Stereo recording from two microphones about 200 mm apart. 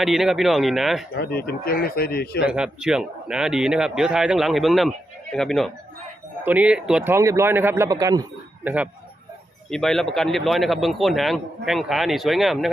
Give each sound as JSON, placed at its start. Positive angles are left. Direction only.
{"t": 0.0, "sound": "speech", "side_deg": 0}
{"t": 1.1, "sound": "speech", "side_deg": 50}
{"t": 2.5, "sound": "speech", "side_deg": -5}
{"t": 9.6, "sound": "speech", "side_deg": 0}